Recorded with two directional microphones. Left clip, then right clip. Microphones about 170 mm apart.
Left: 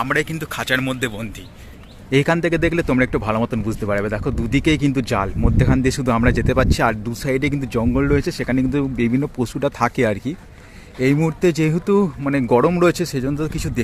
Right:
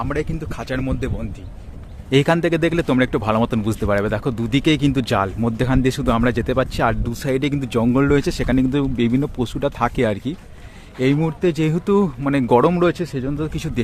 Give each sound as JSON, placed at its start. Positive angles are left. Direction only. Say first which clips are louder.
{"t": 0.0, "sound": "speech", "louder": "left 4 dB", "side_deg": 0}
{"t": 3.3, "sound": "speech", "louder": "right 2 dB", "side_deg": -15}
{"t": 7.8, "sound": "speech", "louder": "right 2 dB", "side_deg": -15}
{"t": 11.2, "sound": "speech", "louder": "left 2 dB", "side_deg": 15}
{"t": 11.6, "sound": "speech", "louder": "left 1 dB", "side_deg": 5}
{"t": 12.8, "sound": "speech", "louder": "left 2 dB", "side_deg": 20}